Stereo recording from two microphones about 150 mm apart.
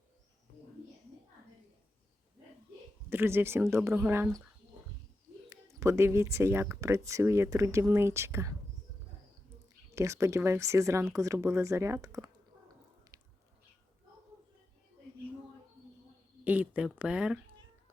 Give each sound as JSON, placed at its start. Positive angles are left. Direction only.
{"t": 3.1, "sound": "speech", "side_deg": -15}
{"t": 5.5, "sound": "speech", "side_deg": -20}
{"t": 9.9, "sound": "speech", "side_deg": -20}
{"t": 13.1, "sound": "a sound", "side_deg": -25}
{"t": 16.4, "sound": "speech", "side_deg": -10}